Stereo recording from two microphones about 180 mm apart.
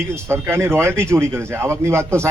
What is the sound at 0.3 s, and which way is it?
Speech, 15° right (ahead or behind).